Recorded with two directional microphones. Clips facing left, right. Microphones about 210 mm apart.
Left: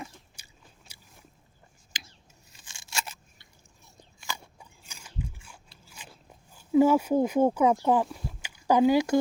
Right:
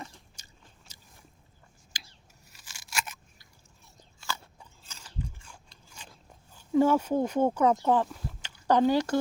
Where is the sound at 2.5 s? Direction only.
25° left (ahead or behind).